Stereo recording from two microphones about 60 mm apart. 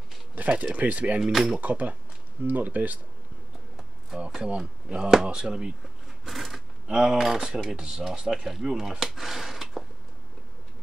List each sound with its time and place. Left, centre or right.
0.5 s speech: centre
4.2 s speech: centre
6.2 s speech: centre
9.0 s a sound: centre